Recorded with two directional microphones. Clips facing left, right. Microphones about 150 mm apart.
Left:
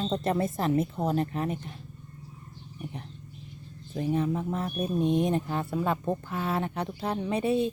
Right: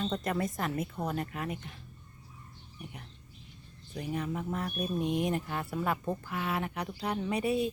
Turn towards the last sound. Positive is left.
turn(degrees=25)  # may be behind; listen again after turning